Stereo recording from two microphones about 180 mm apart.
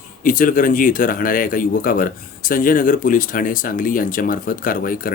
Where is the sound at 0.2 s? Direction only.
50° left (ahead or behind).